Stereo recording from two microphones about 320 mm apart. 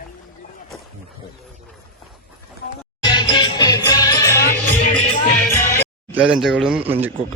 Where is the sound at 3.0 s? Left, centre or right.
Centre.